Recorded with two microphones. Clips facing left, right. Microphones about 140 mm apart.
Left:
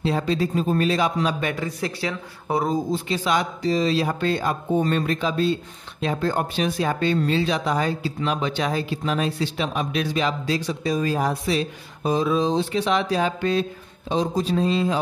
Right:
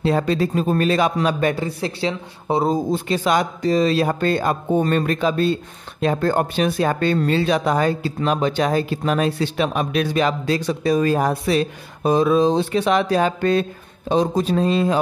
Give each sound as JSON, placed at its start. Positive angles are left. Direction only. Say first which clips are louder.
{"t": 0.0, "sound": "speech", "louder": "right 4 dB", "side_deg": -55}
{"t": 1.4, "sound": "speech", "louder": "right 5 dB", "side_deg": -30}
{"t": 2.7, "sound": "speech", "louder": "right 3 dB", "side_deg": -50}